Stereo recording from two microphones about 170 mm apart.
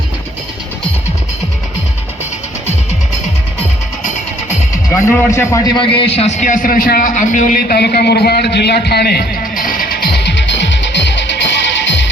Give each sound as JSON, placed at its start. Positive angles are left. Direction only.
{"t": 4.9, "sound": "a man's voice", "side_deg": 15}
{"t": 10.2, "sound": "music", "side_deg": 90}